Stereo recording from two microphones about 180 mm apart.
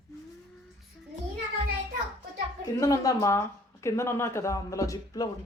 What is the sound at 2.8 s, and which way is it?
Speech, 20° left (ahead or behind).